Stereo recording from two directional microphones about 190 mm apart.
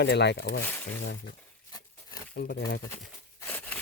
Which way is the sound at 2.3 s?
65° left (ahead or behind).